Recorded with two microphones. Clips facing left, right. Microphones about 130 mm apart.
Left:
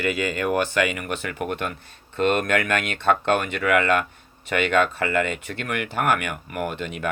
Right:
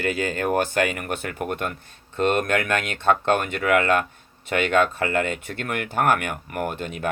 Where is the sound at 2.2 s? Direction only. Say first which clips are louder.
Even; 55° left (ahead or behind).